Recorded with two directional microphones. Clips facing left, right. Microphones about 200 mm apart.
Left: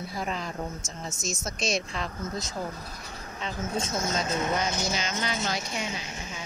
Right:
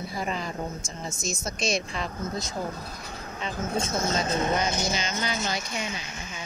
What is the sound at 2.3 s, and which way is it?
Speech, 55° right (ahead or behind).